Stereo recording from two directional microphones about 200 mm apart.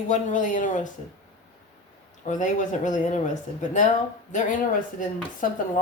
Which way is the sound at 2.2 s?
40° left (ahead or behind).